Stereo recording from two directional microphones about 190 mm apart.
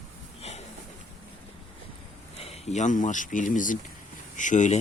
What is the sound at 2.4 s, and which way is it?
Speech, 35° left (ahead or behind).